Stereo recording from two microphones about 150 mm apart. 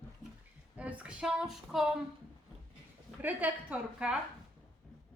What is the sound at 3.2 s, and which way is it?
A woman's voice, 10° right (ahead or behind).